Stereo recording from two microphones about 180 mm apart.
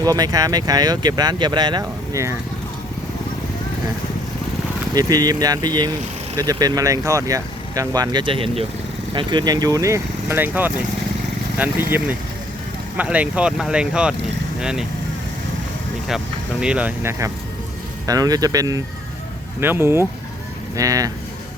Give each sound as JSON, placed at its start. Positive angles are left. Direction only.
{"t": 0.0, "sound": "speech", "side_deg": -20}
{"t": 4.9, "sound": "speech", "side_deg": -20}
{"t": 16.0, "sound": "speech", "side_deg": -5}